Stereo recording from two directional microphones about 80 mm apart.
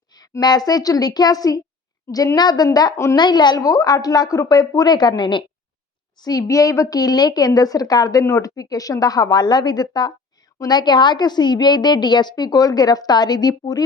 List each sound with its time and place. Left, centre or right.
0.1 s a woman's voice: left
6.1 s a woman's voice: left